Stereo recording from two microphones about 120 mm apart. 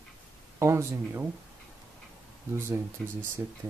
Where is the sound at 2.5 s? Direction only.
20° right (ahead or behind).